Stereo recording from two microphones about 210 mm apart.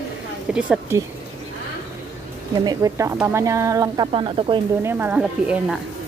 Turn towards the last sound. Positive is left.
turn(degrees=-5)  # may be behind; listen again after turning